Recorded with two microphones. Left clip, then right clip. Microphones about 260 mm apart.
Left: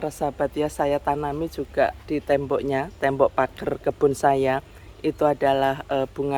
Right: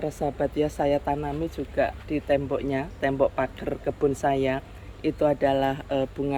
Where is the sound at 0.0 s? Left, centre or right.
Centre.